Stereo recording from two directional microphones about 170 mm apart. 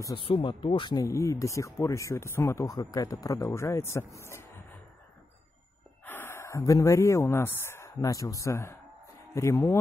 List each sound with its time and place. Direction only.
0.1 s speech: 30° left (ahead or behind)
6.0 s speech: 10° left (ahead or behind)